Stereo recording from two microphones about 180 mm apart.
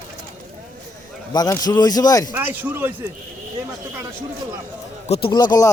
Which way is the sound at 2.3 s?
10° right (ahead or behind).